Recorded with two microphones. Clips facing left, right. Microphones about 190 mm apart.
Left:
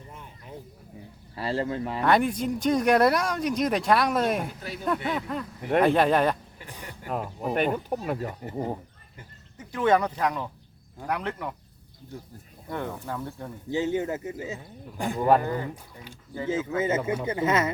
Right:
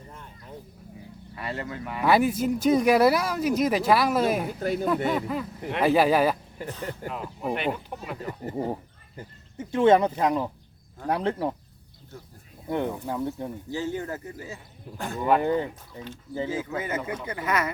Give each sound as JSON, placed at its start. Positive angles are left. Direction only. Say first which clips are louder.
{"t": 0.1, "sound": "a sound", "louder": "even", "side_deg": 10}
{"t": 1.4, "sound": "speech", "louder": "left 6 dB", "side_deg": 30}
{"t": 2.0, "sound": "speech", "louder": "right 2 dB", "side_deg": -5}
{"t": 4.6, "sound": "speech", "louder": "right 10 dB", "side_deg": -45}
{"t": 5.0, "sound": "speech", "louder": "right 3 dB", "side_deg": -5}
{"t": 6.7, "sound": "speech", "louder": "right 8 dB", "side_deg": 10}
{"t": 7.1, "sound": "speech", "louder": "left 4 dB", "side_deg": 45}
{"t": 8.5, "sound": "speech", "louder": "right 2 dB", "side_deg": -5}
{"t": 9.1, "sound": "speech", "louder": "right 9 dB", "side_deg": -25}
{"t": 12.6, "sound": "speech", "louder": "right 5 dB", "side_deg": -20}
{"t": 13.7, "sound": "speech", "louder": "left 6 dB", "side_deg": 20}
{"t": 15.4, "sound": "speech", "louder": "right 5 dB", "side_deg": -25}
{"t": 16.5, "sound": "speech", "louder": "left 8 dB", "side_deg": 25}